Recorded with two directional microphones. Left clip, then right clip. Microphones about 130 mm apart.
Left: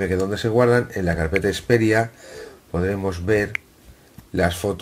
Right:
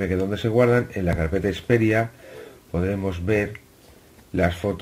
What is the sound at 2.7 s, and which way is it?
Speech, 5° left (ahead or behind).